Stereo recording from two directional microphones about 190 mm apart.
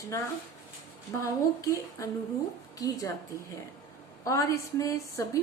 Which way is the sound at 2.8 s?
20° left (ahead or behind).